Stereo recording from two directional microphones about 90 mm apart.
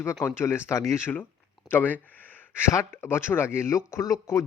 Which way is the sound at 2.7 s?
25° left (ahead or behind).